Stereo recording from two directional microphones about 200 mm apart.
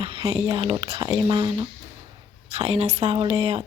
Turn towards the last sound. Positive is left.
turn(degrees=-30)  # may be behind; listen again after turning